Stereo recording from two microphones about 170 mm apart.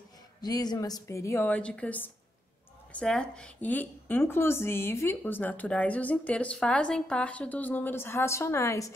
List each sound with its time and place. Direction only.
0.4 s speech: 25° left (ahead or behind)